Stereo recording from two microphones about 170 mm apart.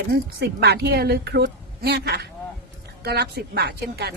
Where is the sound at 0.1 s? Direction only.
70° right (ahead or behind).